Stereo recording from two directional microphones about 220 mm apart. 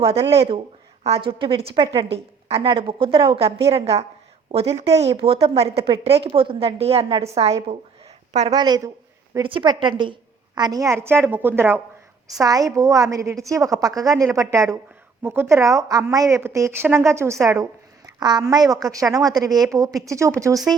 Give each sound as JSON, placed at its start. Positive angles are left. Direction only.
{"t": 0.0, "sound": "a woman's voice", "side_deg": -25}